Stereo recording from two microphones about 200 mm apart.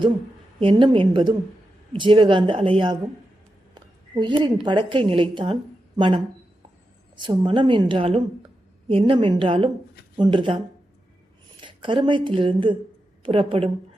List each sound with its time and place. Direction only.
0.6 s speech: 25° right (ahead or behind)
3.8 s a sound: 25° right (ahead or behind)
4.6 s speech: 25° right (ahead or behind)
7.3 s speech: 25° right (ahead or behind)
11.6 s speech: 25° right (ahead or behind)